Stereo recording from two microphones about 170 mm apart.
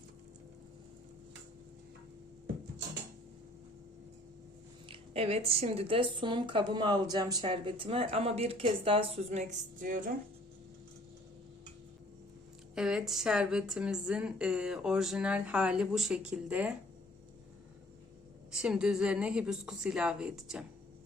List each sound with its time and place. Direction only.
4.9 s speech: 35° right (ahead or behind)
12.7 s a woman's voice: 5° right (ahead or behind)
18.5 s a woman's voice: 5° right (ahead or behind)